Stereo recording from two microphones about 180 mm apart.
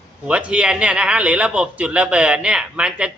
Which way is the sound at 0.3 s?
5° right (ahead or behind).